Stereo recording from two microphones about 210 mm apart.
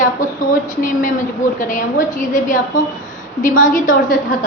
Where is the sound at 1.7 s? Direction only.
40° left (ahead or behind).